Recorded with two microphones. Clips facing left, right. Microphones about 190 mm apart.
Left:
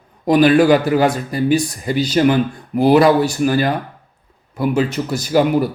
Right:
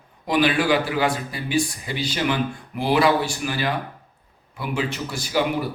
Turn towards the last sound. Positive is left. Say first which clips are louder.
# left 8 dB
turn(degrees=40)  # may be behind; listen again after turning